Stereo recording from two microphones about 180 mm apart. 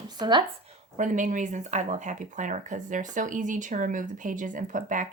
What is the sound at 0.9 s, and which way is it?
Speech, 45° right (ahead or behind).